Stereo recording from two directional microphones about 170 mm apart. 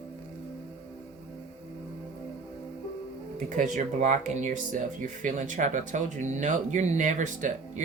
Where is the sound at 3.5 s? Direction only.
50° right (ahead or behind).